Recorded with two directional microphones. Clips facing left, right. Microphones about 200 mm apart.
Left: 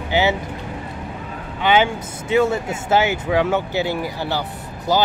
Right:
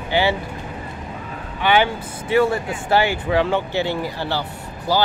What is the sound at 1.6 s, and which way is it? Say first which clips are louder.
Speech: left 1 dB; 15° left (ahead or behind).